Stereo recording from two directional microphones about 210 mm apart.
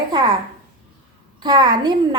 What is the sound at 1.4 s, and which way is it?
Speech, 20° right (ahead or behind).